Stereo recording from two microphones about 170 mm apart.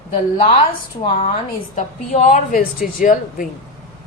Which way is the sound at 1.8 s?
50° left (ahead or behind).